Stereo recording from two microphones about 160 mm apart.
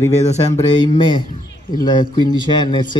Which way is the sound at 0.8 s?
30° left (ahead or behind).